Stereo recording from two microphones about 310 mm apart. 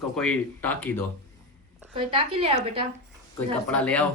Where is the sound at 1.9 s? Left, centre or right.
Centre.